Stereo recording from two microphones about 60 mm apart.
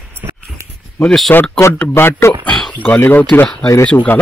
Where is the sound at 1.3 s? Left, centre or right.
Left.